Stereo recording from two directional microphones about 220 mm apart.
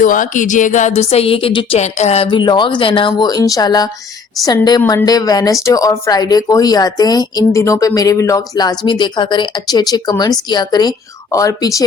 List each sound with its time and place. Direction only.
0.0 s a woman's voice: 35° left (ahead or behind); by 11.9 s 15° left (ahead or behind)